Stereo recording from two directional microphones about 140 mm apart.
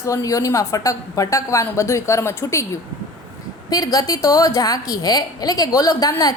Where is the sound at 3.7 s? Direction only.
25° left (ahead or behind).